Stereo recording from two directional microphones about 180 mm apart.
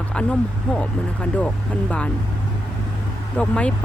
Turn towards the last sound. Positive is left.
turn(degrees=5)  # may be behind; listen again after turning